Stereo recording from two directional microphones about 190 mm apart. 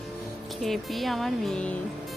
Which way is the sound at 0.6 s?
Centre (ahead or behind).